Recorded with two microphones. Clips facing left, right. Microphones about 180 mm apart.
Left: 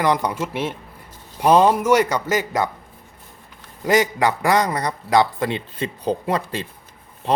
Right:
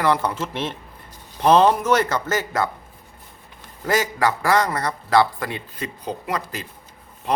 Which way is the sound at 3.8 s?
20° left (ahead or behind).